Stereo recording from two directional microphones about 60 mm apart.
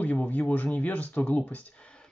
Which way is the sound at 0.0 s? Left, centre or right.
Left.